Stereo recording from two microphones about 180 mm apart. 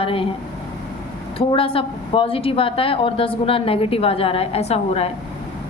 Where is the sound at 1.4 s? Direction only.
30° left (ahead or behind).